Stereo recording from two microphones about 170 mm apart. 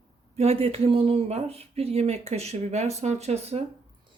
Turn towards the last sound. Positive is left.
turn(degrees=-40)  # may be behind; listen again after turning